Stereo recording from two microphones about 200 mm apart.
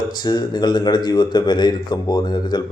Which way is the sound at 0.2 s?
20° left (ahead or behind).